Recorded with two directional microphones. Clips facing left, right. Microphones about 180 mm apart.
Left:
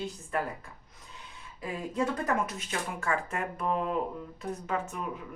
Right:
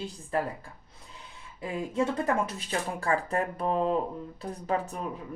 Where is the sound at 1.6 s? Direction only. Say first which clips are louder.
Right 3 dB; 25° right (ahead or behind).